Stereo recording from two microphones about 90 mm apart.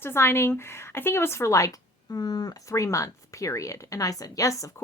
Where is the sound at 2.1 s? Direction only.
45° left (ahead or behind).